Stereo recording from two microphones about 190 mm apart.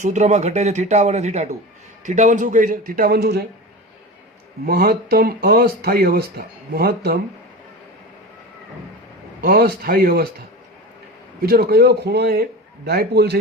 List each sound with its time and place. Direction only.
0.0 s speech: 40° right (ahead or behind); by 3.4 s 55° right (ahead or behind)
4.6 s speech: 50° right (ahead or behind)
9.4 s speech: 55° right (ahead or behind)
11.4 s a man's voice: 55° right (ahead or behind)